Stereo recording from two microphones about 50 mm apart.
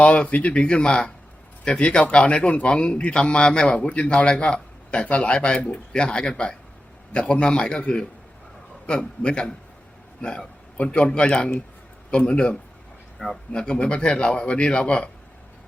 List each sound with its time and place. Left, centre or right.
0.0 s a man's voice: left
13.1 s speech: centre
13.5 s a man's voice: centre